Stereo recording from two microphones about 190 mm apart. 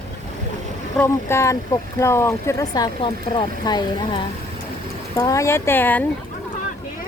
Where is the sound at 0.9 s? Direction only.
15° left (ahead or behind).